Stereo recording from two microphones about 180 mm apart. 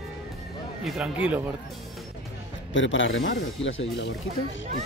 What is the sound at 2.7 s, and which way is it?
Speech, 90° left.